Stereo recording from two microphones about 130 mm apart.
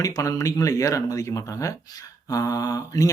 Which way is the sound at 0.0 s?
25° left (ahead or behind).